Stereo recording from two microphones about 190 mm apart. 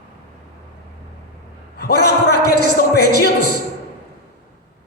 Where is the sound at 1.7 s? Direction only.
60° left (ahead or behind).